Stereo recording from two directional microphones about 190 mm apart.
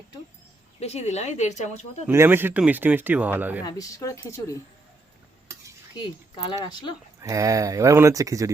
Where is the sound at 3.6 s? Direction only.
20° left (ahead or behind).